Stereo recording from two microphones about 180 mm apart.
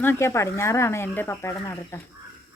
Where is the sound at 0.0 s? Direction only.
15° left (ahead or behind).